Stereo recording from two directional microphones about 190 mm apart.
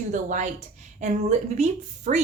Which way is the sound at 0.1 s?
40° right (ahead or behind).